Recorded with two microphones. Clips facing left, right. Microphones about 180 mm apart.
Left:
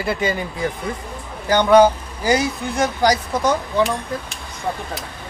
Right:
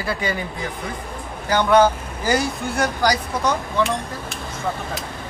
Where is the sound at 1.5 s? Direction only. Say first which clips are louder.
Left 3 dB; 15° left (ahead or behind).